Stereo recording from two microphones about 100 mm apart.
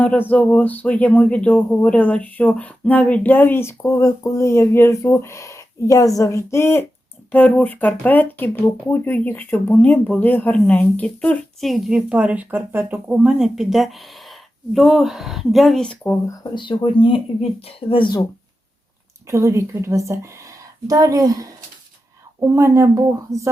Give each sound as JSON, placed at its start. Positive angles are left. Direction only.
{"t": 0.0, "sound": "speech", "side_deg": 15}
{"t": 11.6, "sound": "a woman's voice", "side_deg": -5}
{"t": 13.1, "sound": "a woman's voice", "side_deg": -5}
{"t": 16.6, "sound": "speech", "side_deg": 55}
{"t": 17.7, "sound": "speech", "side_deg": 70}
{"t": 19.3, "sound": "a woman's voice", "side_deg": -30}
{"t": 22.4, "sound": "speech", "side_deg": -25}